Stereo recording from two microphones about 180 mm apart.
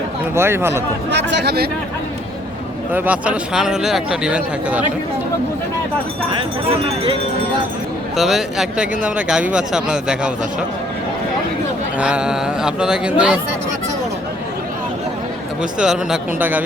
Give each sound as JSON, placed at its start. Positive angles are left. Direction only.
{"t": 0.3, "sound": "speech", "side_deg": -15}
{"t": 1.1, "sound": "speech", "side_deg": -75}
{"t": 2.9, "sound": "a man's voice", "side_deg": -10}
{"t": 6.3, "sound": "speech", "side_deg": -30}
{"t": 8.1, "sound": "a man's voice", "side_deg": 0}
{"t": 11.9, "sound": "a man's voice", "side_deg": -5}
{"t": 15.8, "sound": "a man's voice", "side_deg": -5}